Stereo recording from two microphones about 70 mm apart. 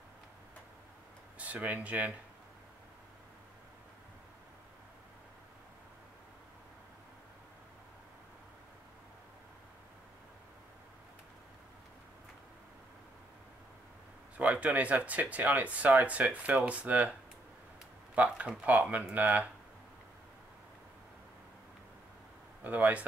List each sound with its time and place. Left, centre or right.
1.4 s speech: right
14.3 s speech: right
22.6 s speech: right